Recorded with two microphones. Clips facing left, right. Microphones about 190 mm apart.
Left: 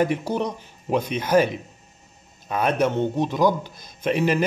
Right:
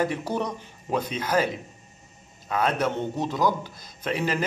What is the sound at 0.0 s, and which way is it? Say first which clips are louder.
A man's voice: left 4 dB; 15° left (ahead or behind).